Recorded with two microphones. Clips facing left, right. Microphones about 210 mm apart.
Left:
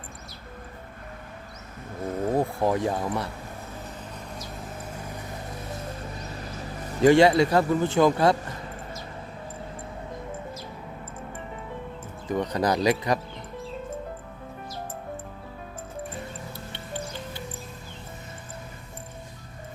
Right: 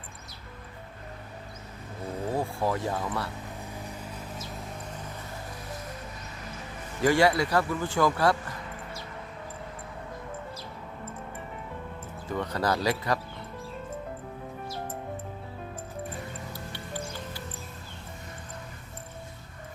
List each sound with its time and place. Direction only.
2.2 s a sound: 45° left (ahead or behind)
2.6 s speech: 20° left (ahead or behind)
7.0 s speech: 20° left (ahead or behind)
12.3 s speech: 15° left (ahead or behind)
16.5 s music: 25° left (ahead or behind)